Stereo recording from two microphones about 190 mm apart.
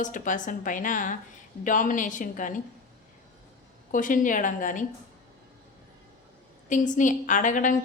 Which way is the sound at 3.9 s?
45° left (ahead or behind).